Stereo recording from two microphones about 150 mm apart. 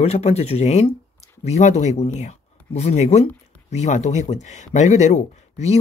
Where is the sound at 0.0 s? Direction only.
45° left (ahead or behind).